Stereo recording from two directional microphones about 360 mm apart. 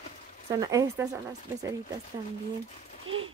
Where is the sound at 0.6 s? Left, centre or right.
Centre.